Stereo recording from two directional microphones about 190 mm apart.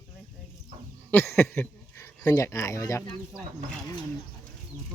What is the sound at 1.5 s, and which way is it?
Speech, 15° left (ahead or behind).